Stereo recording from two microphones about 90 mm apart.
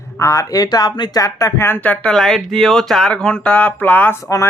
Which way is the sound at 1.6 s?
20° left (ahead or behind).